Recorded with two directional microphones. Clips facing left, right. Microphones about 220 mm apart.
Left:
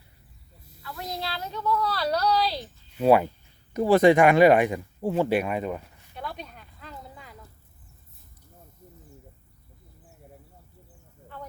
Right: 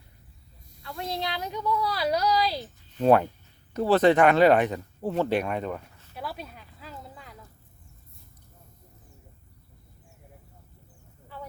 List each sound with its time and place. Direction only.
0.8 s snake: 25° right (ahead or behind)
1.2 s a woman's voice: 15° right (ahead or behind)
3.0 s speech: 10° left (ahead or behind)
6.1 s a sound: 5° right (ahead or behind)